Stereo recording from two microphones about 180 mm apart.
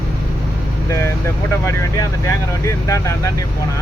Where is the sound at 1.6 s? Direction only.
15° left (ahead or behind).